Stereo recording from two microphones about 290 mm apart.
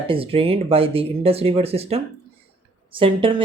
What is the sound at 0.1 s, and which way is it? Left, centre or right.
Speech, centre.